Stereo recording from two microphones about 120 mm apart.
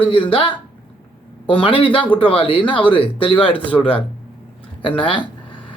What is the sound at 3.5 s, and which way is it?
Speech, 10° left (ahead or behind).